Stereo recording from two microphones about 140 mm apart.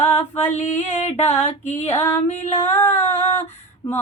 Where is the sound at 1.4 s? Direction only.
50° left (ahead or behind).